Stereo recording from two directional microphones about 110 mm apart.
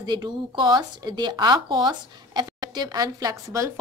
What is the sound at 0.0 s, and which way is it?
A woman's voice, 40° right (ahead or behind).